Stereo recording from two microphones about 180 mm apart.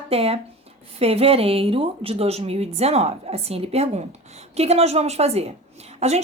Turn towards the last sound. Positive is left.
turn(degrees=-35)  # may be behind; listen again after turning